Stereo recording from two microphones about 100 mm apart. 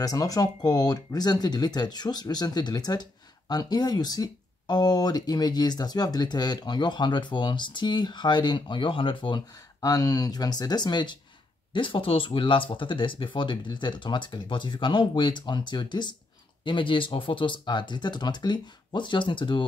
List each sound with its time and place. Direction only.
0.0 s speech: 35° left (ahead or behind); by 9.4 s 55° left (ahead or behind)
9.8 s speech: 35° left (ahead or behind)
11.7 s speech: 60° left (ahead or behind)